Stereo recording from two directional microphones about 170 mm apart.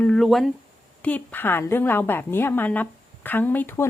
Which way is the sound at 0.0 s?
5° left (ahead or behind).